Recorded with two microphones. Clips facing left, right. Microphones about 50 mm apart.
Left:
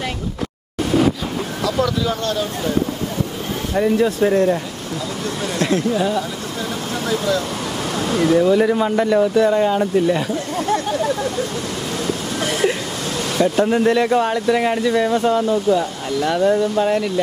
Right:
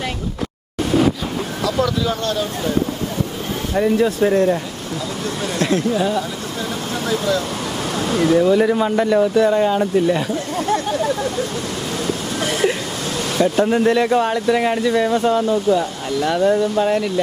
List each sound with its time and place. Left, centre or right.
0.9 s vehicle: right
1.6 s a sound: right
3.8 s speech: right
5.5 s speech: right
10.7 s waterfall: right
12.0 s a sound: right
13.1 s speech: right